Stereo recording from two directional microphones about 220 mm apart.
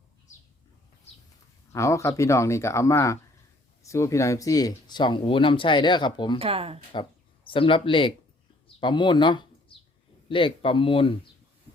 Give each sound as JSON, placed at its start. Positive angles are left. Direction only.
{"t": 1.7, "sound": "speech", "side_deg": 15}
{"t": 6.4, "sound": "speech", "side_deg": -25}
{"t": 6.9, "sound": "speech", "side_deg": 20}
{"t": 8.6, "sound": "bird", "side_deg": 20}
{"t": 10.2, "sound": "speech", "side_deg": 25}